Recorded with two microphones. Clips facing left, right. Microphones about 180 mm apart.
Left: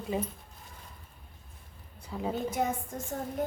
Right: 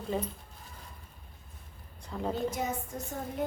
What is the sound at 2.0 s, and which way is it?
Speech, 5° left (ahead or behind).